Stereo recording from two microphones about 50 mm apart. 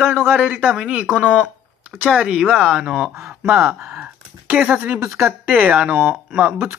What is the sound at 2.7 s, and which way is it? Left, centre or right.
Speech, centre.